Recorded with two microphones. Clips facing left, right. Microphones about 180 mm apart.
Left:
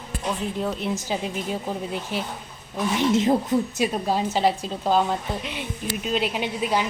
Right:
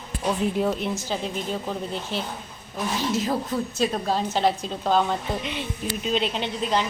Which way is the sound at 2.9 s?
25° left (ahead or behind).